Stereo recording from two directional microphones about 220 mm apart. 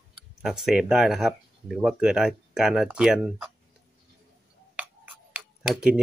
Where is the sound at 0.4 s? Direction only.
Centre (ahead or behind).